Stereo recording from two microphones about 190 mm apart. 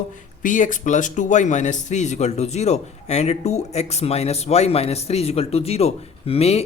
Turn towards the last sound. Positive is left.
turn(degrees=30)  # may be behind; listen again after turning